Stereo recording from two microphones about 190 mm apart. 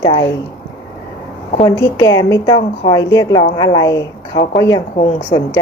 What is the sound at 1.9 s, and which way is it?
Speech, 20° left (ahead or behind).